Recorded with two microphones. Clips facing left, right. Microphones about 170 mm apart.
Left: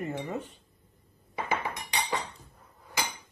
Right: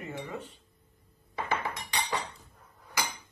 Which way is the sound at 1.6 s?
20° left (ahead or behind).